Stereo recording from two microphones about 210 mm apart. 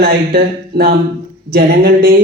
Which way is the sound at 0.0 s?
45° right (ahead or behind).